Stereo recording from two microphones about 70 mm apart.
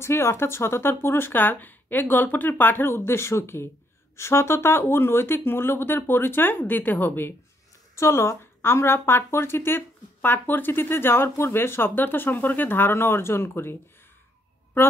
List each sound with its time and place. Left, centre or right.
0.0 s a woman's voice: left
7.9 s a woman's voice: left